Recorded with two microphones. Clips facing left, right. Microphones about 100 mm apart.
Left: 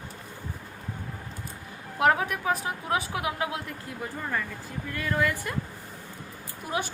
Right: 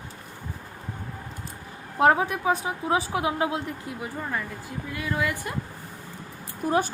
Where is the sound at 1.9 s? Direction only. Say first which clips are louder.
Right 3 dB; 30° right (ahead or behind).